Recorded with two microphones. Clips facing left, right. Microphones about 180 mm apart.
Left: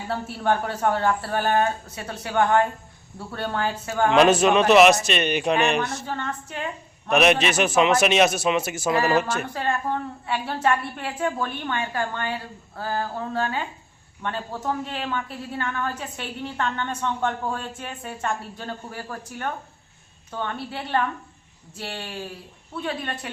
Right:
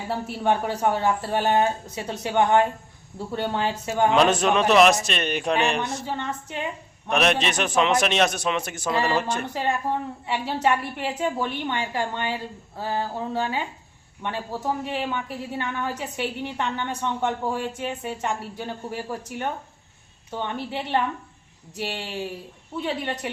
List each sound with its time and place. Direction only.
0.1 s a woman's voice: 15° right (ahead or behind)
4.1 s a man's voice: 5° left (ahead or behind)
6.1 s a woman's voice: 15° right (ahead or behind)
7.1 s a man's voice: 5° left (ahead or behind)
9.5 s a woman's voice: 15° right (ahead or behind)